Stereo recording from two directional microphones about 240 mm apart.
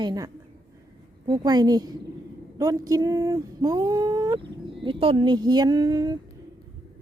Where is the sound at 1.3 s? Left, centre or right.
Centre.